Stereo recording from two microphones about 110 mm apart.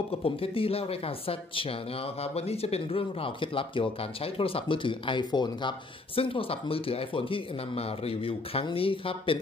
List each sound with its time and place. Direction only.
0.1 s speech: 60° left (ahead or behind)
2.2 s speech: 65° left (ahead or behind)